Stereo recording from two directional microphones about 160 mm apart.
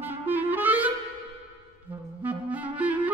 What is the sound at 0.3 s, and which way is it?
Clarinet, 10° right (ahead or behind).